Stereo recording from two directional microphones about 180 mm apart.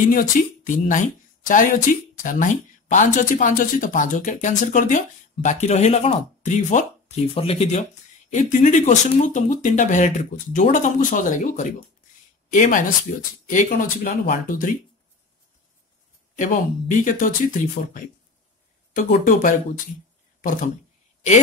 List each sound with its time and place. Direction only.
0.1 s speech: 45° left (ahead or behind)
2.2 s speech: 45° left (ahead or behind)
16.3 s speech: 45° left (ahead or behind)